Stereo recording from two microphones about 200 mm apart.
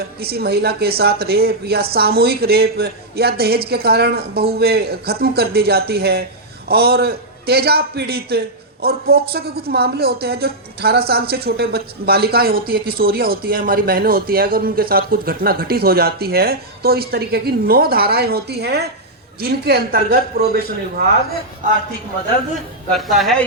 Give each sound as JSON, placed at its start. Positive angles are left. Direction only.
{"t": 0.2, "sound": "a man's voice", "side_deg": -50}
{"t": 23.0, "sound": "speech", "side_deg": 0}